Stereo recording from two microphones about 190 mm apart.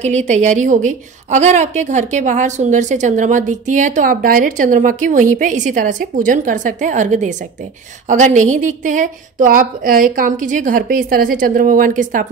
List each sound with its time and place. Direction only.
0.0 s a woman's voice: 35° right (ahead or behind)